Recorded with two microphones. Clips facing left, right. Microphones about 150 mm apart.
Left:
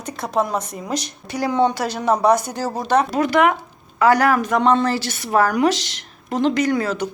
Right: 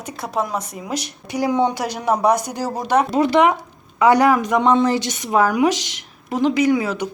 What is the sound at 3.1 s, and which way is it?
A woman's voice, 25° right (ahead or behind).